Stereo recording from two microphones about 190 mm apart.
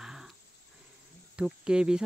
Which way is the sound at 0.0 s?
5° right (ahead or behind).